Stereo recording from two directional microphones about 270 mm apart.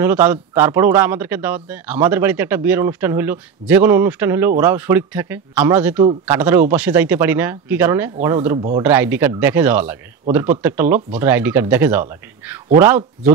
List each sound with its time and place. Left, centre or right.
0.0 s a man's voice: centre
8.5 s speech: centre
8.8 s a man's voice: centre